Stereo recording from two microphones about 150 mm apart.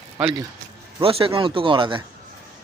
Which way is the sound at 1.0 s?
40° right (ahead or behind).